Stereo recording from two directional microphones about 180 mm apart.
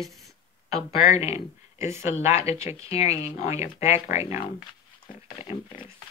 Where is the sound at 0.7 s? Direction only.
35° left (ahead or behind).